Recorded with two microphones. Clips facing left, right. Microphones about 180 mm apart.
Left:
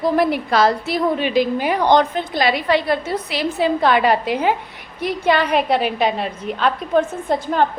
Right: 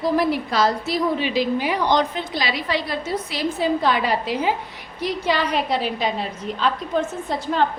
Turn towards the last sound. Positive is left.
turn(degrees=50)  # may be behind; listen again after turning